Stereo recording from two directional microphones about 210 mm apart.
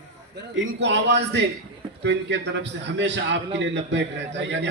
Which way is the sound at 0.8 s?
55° right (ahead or behind).